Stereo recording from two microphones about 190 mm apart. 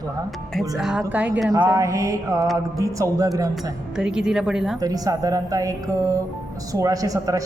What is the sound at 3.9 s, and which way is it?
Speech, 5° right (ahead or behind).